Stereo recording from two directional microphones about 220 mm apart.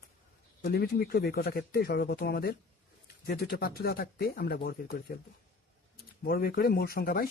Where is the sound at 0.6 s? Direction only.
45° left (ahead or behind).